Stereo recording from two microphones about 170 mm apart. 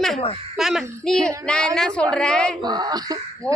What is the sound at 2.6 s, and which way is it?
Speech, 25° right (ahead or behind).